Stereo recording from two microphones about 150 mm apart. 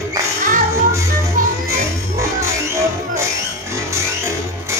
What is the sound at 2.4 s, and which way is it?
Music, 20° right (ahead or behind).